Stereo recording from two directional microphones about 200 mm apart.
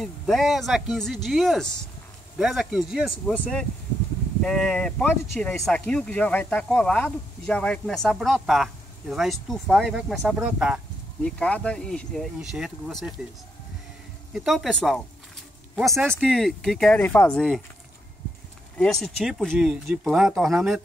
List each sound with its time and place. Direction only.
0.0 s speech: centre (ahead or behind)
14.3 s speech: centre (ahead or behind)
18.8 s speech: centre (ahead or behind)